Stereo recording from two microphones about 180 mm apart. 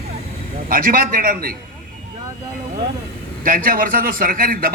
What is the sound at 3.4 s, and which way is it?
A man's voice, 50° right (ahead or behind).